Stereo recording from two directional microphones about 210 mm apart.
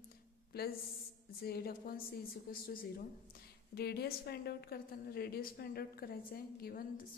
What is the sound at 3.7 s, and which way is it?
A woman's voice, 50° left (ahead or behind).